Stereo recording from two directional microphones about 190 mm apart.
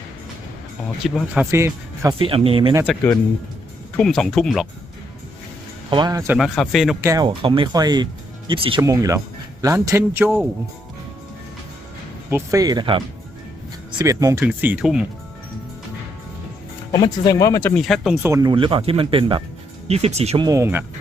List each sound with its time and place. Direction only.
1.0 s a man's voice: 5° right (ahead or behind)
2.1 s speech: 30° right (ahead or behind)
3.9 s speech: 5° left (ahead or behind)
5.9 s speech: 20° right (ahead or behind)
6.3 s speech: centre (ahead or behind)
7.0 s a man's voice: 20° right (ahead or behind)
12.3 s speech: 15° right (ahead or behind)
14.0 s a man's voice: 15° right (ahead or behind)
16.9 s speech: 20° left (ahead or behind)
17.7 s speech: centre (ahead or behind)
18.2 s speech: 15° right (ahead or behind); by 20.4 s 35° right (ahead or behind)
20.4 s a man's voice: 15° right (ahead or behind)